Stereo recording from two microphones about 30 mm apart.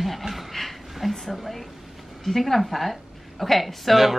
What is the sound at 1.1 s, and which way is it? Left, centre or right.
A woman's voice, centre.